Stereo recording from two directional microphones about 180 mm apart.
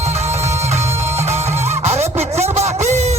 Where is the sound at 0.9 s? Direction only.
15° right (ahead or behind).